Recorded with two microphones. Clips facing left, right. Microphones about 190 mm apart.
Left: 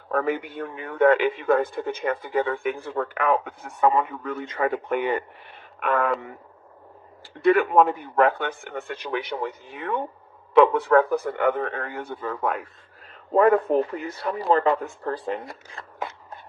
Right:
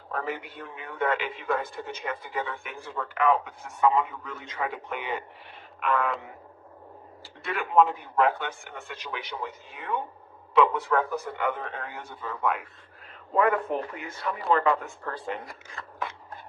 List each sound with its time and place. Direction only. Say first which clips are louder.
0.1 s a man's voice: left 8 dB; 55° left (ahead or behind)
7.4 s a man's voice: left 6 dB; 55° left (ahead or behind); by 15.4 s 35° left (ahead or behind)
15.8 s a sound: left 1 dB; 30° left (ahead or behind)